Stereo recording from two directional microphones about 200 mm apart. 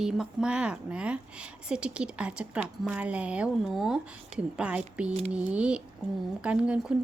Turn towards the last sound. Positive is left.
turn(degrees=-5)  # may be behind; listen again after turning